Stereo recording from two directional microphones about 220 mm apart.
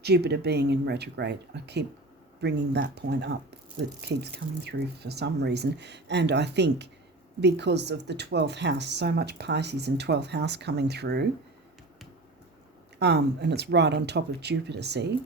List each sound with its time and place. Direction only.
0.0 s speech: 45° right (ahead or behind)
13.0 s speech: 50° right (ahead or behind)